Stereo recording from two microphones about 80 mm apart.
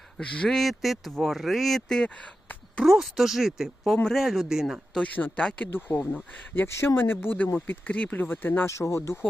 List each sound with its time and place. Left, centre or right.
0.2 s speech: centre
0.5 s speech: centre
2.8 s speech: centre
4.9 s speech: centre
5.7 s speech: left
8.7 s speech: left